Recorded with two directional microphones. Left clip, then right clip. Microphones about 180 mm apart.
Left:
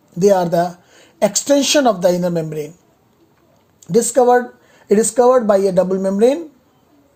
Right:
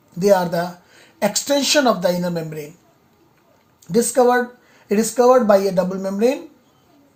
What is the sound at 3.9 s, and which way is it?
Speech, 50° left (ahead or behind).